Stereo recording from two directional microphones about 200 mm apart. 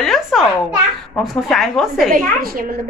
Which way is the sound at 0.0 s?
Centre (ahead or behind).